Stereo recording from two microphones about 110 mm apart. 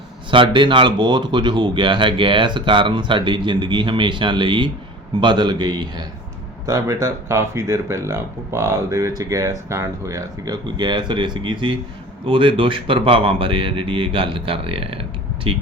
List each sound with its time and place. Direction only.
0.3 s speech: 50° right (ahead or behind)
6.7 s speech: 30° right (ahead or behind); by 14.9 s 55° right (ahead or behind)